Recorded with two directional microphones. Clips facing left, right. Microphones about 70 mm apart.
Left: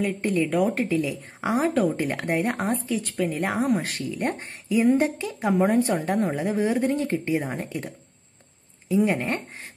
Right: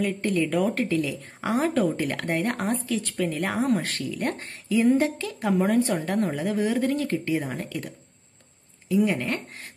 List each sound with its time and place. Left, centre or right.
0.0 s speech: centre
0.9 s speech: left
1.5 s speech: centre
4.0 s speech: centre